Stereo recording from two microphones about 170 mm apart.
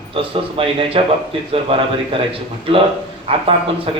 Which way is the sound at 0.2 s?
30° right (ahead or behind).